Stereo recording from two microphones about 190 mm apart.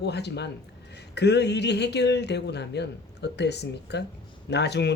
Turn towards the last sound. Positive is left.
turn(degrees=60)  # may be behind; listen again after turning